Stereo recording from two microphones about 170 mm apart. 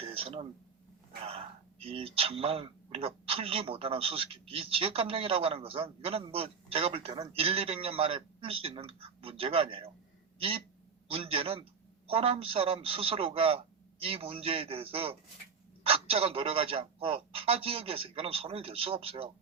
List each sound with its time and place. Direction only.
0.0 s a sound: 35° right (ahead or behind)
1.2 s speech: 35° right (ahead or behind)
11.1 s speech: 35° right (ahead or behind)